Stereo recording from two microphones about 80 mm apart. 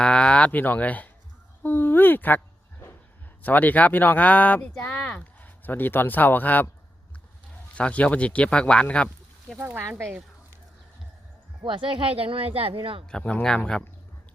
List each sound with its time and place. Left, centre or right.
0.0 s speech: centre
3.4 s speech: left
4.7 s speech: centre
5.2 s speech: left
7.8 s speech: centre
9.6 s speech: right
11.6 s speech: right
13.1 s speech: centre